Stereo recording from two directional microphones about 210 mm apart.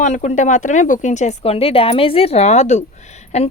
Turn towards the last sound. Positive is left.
turn(degrees=30)  # may be behind; listen again after turning